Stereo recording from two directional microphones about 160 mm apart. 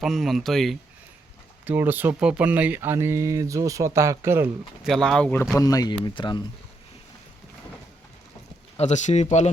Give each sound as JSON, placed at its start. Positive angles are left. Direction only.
{"t": 0.0, "sound": "speech", "side_deg": 0}
{"t": 1.6, "sound": "speech", "side_deg": -10}
{"t": 4.8, "sound": "speech", "side_deg": 5}
{"t": 5.5, "sound": "speech", "side_deg": 20}
{"t": 8.8, "sound": "speech", "side_deg": 45}